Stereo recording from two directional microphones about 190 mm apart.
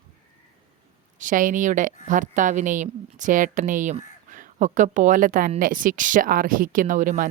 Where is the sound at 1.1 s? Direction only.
45° right (ahead or behind).